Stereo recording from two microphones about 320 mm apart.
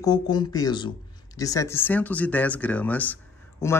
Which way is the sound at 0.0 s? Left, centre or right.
Centre.